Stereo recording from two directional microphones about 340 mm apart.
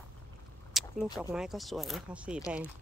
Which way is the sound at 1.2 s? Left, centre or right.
Centre.